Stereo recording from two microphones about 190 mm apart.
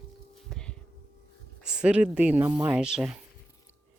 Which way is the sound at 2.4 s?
20° right (ahead or behind).